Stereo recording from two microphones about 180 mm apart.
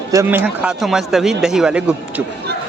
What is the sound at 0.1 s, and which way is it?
Speech, 15° right (ahead or behind).